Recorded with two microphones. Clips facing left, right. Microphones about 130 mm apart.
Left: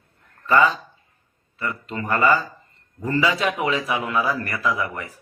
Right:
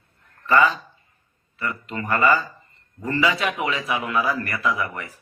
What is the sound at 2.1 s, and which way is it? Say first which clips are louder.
Speech: even; centre (ahead or behind).